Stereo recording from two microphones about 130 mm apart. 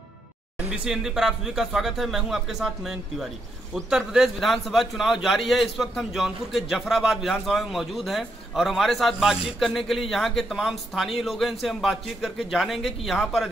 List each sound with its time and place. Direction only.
0.7 s a man's voice: 5° right (ahead or behind)